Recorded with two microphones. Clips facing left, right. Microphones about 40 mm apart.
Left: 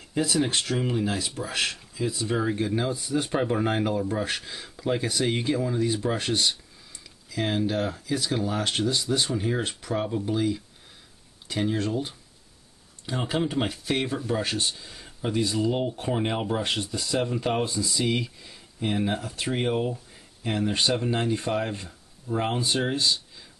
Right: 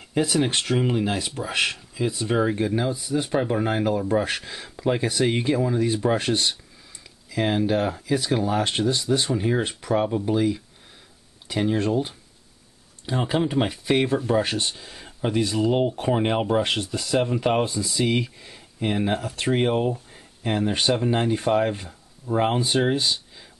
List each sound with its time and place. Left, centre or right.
0.2 s speech: right
2.5 s speech: centre; by 15.0 s right
15.0 s a sound: right
15.5 s speech: right
17.4 s speech: centre